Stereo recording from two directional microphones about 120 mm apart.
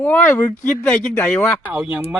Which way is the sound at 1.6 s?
10° right (ahead or behind).